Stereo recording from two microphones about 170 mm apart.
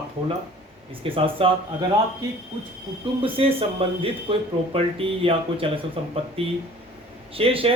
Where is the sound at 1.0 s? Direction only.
30° right (ahead or behind).